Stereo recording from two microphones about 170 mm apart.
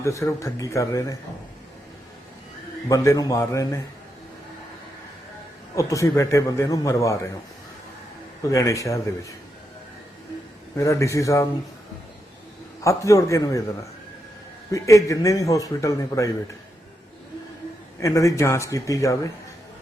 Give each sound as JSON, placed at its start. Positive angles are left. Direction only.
{"t": 0.0, "sound": "a man's voice", "side_deg": 15}
{"t": 2.9, "sound": "a man's voice", "side_deg": 20}
{"t": 5.7, "sound": "a man's voice", "side_deg": 20}
{"t": 8.4, "sound": "a man's voice", "side_deg": 20}
{"t": 10.8, "sound": "a man's voice", "side_deg": 20}
{"t": 12.8, "sound": "a man's voice", "side_deg": 20}
{"t": 14.7, "sound": "a man's voice", "side_deg": 20}
{"t": 18.0, "sound": "a man's voice", "side_deg": 20}